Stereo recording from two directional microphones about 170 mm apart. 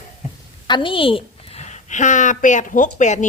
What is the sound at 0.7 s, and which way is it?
A woman's voice, 30° left (ahead or behind).